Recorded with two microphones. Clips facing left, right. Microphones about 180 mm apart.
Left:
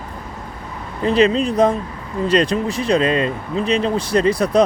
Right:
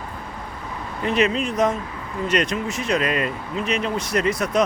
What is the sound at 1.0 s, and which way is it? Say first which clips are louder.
Speech: left 6 dB; 30° left (ahead or behind).